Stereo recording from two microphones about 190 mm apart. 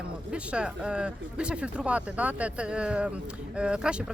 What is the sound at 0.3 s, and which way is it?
Speech, 5° right (ahead or behind).